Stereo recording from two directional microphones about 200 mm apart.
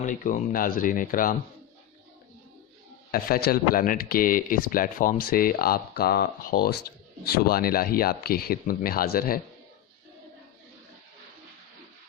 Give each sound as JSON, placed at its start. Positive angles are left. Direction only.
{"t": 0.0, "sound": "speech", "side_deg": 40}
{"t": 3.1, "sound": "speech", "side_deg": 50}